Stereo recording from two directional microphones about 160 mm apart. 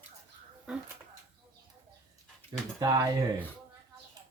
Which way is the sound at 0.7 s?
5° right (ahead or behind).